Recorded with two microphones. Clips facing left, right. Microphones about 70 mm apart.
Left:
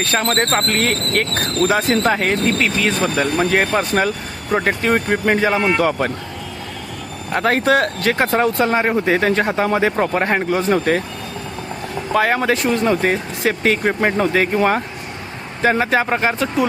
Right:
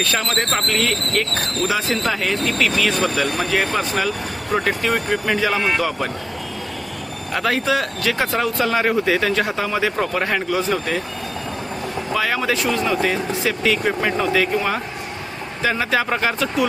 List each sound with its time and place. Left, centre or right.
0.0 s speech: left
7.3 s speech: left
7.6 s speech: left
12.1 s speech: left